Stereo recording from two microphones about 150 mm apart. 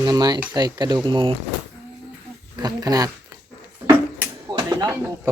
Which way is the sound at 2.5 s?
25° right (ahead or behind).